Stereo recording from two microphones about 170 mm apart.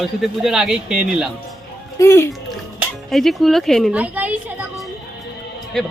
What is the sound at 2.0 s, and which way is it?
Speech, 15° left (ahead or behind).